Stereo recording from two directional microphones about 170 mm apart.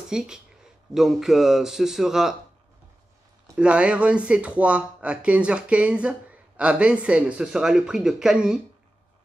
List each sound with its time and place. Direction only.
0.1 s a man's voice: 5° right (ahead or behind)
3.5 s speech: 5° right (ahead or behind)